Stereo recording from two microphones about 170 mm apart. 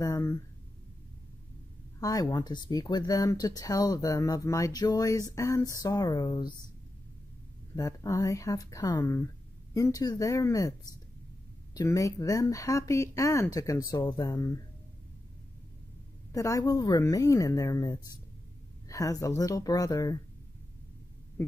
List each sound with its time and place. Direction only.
0.0 s speech: 20° left (ahead or behind)
2.0 s speech: 20° left (ahead or behind)
7.7 s speech: 20° left (ahead or behind)
11.7 s speech: 20° left (ahead or behind)
16.3 s speech: 20° left (ahead or behind)